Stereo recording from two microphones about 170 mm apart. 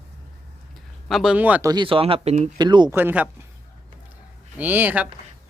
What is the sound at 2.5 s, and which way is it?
Speech, 25° right (ahead or behind).